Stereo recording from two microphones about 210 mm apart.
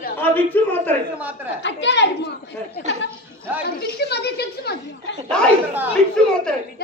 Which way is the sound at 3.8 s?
50° left (ahead or behind).